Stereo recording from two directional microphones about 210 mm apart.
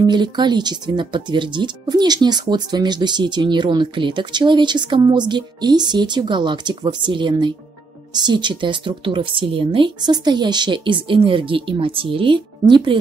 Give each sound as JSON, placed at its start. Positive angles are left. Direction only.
{"t": 0.0, "sound": "speech", "side_deg": -20}